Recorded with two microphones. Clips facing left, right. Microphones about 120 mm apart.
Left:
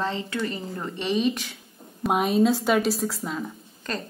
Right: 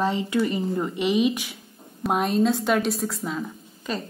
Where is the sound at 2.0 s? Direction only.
5° left (ahead or behind).